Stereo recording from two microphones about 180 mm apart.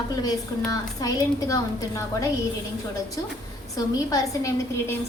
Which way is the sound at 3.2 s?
20° left (ahead or behind).